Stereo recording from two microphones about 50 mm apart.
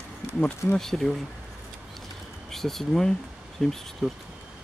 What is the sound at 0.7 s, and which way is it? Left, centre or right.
Speech, centre.